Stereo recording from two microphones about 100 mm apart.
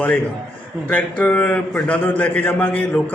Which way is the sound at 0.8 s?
15° left (ahead or behind).